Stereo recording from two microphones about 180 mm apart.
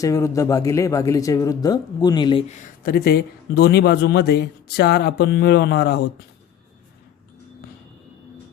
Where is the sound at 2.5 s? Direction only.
50° left (ahead or behind); by 6.1 s 65° left (ahead or behind).